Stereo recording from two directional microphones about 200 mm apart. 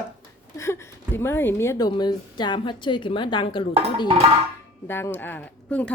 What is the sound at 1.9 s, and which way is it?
A woman's voice, 20° left (ahead or behind).